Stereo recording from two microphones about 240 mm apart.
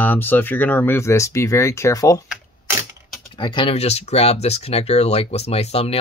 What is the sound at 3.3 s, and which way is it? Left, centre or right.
Speech, centre.